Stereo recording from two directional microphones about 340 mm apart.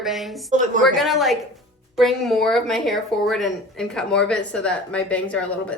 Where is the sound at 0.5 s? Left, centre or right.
Right.